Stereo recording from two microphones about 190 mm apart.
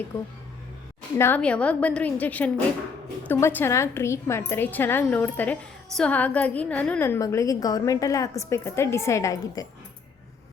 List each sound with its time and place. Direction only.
1.2 s a woman's voice: 10° left (ahead or behind)